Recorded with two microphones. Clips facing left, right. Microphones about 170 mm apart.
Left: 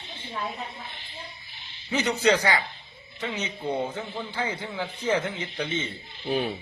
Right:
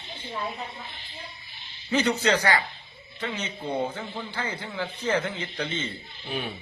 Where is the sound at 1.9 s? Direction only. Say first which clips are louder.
Even; 15° left (ahead or behind).